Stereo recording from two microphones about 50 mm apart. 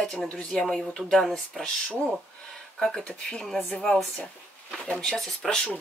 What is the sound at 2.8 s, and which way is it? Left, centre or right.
Speech, centre.